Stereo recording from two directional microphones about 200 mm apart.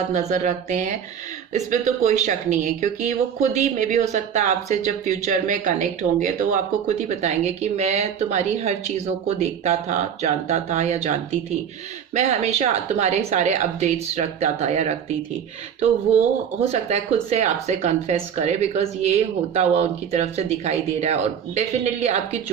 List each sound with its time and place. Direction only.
0.1 s speech: 35° right (ahead or behind)
16.9 s speech: 30° right (ahead or behind)